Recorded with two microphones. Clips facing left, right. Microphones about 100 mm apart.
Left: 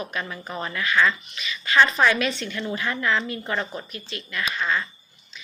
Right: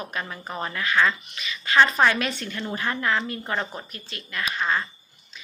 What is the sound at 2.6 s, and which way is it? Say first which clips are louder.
Speech: left 1 dB; 30° right (ahead or behind).